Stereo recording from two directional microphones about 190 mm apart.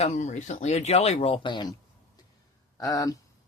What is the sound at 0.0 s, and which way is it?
Speech, 40° left (ahead or behind).